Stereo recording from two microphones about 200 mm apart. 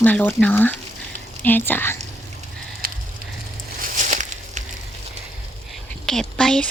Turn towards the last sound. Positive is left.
turn(degrees=5)  # may be behind; listen again after turning